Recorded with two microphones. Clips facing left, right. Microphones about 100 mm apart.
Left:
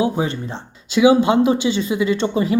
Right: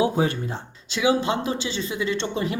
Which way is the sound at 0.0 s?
20° left (ahead or behind).